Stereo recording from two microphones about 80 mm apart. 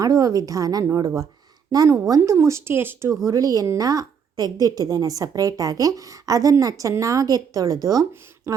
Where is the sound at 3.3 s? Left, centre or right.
Right.